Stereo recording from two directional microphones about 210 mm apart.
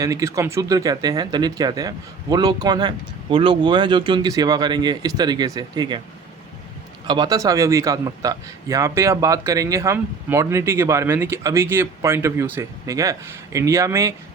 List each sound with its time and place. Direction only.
0.0 s a man's voice: 15° right (ahead or behind)
7.1 s a man's voice: 20° right (ahead or behind)